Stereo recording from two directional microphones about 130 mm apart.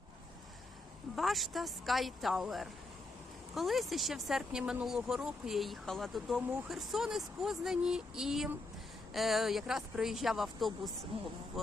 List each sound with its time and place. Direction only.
1.1 s speech: centre (ahead or behind)
11.1 s speech: 50° right (ahead or behind)
11.6 s speech: centre (ahead or behind)